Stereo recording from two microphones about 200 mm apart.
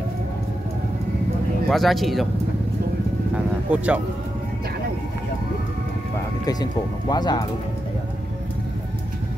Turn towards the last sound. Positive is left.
turn(degrees=20)  # may be behind; listen again after turning